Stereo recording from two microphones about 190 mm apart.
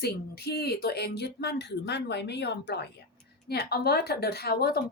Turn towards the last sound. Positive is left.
turn(degrees=55)  # may be behind; listen again after turning